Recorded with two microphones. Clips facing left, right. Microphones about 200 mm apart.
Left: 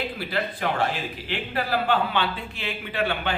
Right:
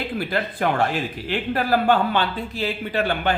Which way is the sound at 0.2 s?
50° right (ahead or behind).